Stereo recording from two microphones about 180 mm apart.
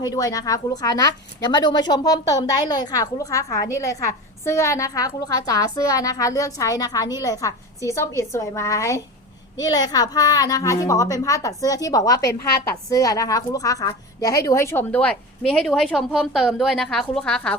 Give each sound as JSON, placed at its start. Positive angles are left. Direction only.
{"t": 0.0, "sound": "a woman's voice", "side_deg": 20}